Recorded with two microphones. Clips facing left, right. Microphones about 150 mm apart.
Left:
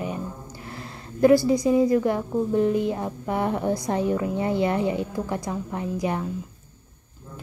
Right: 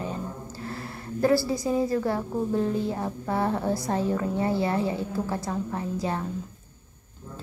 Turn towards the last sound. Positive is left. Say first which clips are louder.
# left 2 dB
turn(degrees=15)  # may be behind; listen again after turning